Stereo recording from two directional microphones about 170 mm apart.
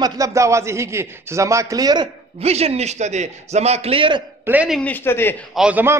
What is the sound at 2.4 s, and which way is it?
A man's voice, 40° right (ahead or behind).